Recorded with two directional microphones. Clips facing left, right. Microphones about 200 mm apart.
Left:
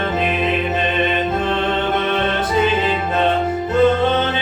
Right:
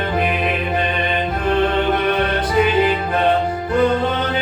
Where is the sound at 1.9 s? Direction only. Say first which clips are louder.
Right 1 dB; 25° left (ahead or behind).